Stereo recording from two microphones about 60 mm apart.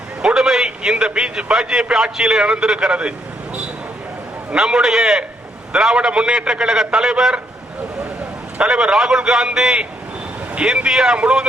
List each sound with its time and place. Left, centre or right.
0.2 s a man's voice: centre
4.5 s a man's voice: centre
8.6 s a man's voice: centre